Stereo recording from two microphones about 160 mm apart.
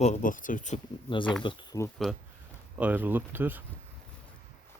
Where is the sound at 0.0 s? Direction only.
50° left (ahead or behind).